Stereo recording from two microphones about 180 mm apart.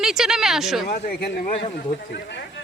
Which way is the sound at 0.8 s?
55° left (ahead or behind).